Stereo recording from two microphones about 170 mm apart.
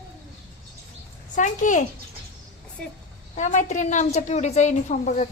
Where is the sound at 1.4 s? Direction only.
50° left (ahead or behind).